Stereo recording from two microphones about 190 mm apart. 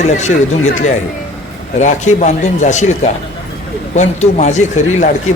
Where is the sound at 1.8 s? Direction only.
40° left (ahead or behind).